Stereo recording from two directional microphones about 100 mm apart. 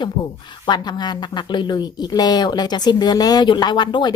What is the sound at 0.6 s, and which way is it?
A woman's voice, 45° left (ahead or behind).